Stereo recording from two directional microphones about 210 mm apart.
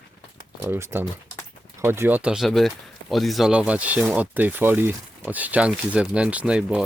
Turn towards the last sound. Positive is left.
turn(degrees=-5)  # may be behind; listen again after turning